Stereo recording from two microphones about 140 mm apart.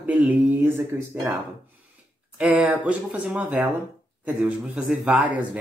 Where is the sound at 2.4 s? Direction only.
5° right (ahead or behind).